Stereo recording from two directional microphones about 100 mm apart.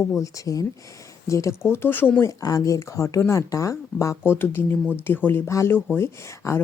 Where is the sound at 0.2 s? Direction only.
35° left (ahead or behind); by 2.2 s 20° left (ahead or behind).